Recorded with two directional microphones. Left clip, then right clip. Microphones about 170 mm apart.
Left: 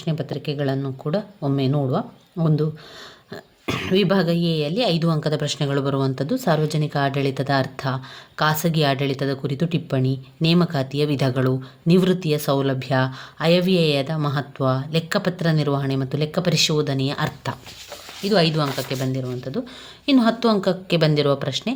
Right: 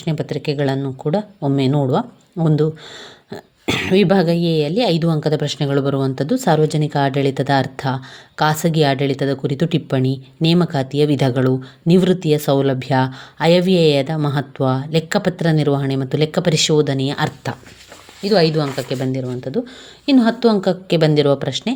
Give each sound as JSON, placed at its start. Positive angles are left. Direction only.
{"t": 0.0, "sound": "speech", "side_deg": -25}